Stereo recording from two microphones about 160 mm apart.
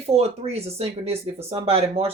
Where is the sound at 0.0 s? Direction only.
40° right (ahead or behind).